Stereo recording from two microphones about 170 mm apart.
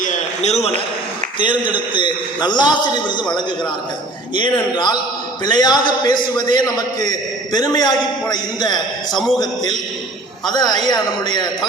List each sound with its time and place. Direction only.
0.0 s a sound: 45° left (ahead or behind)
1.4 s a man's voice: 30° left (ahead or behind)
4.4 s a man's voice: 25° left (ahead or behind)
10.5 s a man's voice: 25° left (ahead or behind)